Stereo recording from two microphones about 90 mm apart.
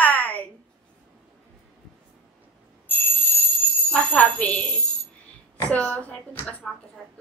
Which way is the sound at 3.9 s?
15° left (ahead or behind).